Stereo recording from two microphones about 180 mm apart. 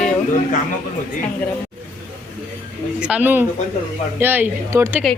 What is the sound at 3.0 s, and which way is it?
Speech, 5° right (ahead or behind).